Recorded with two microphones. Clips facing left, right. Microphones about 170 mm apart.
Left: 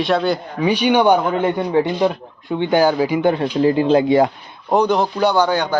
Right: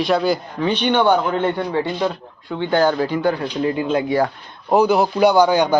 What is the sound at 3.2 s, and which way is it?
Speech, 25° left (ahead or behind).